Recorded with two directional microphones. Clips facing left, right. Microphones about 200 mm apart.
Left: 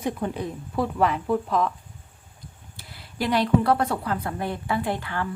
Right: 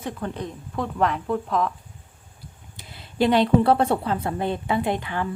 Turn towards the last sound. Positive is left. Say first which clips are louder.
# right 3 dB
turn(degrees=-20)  # may be behind; listen again after turning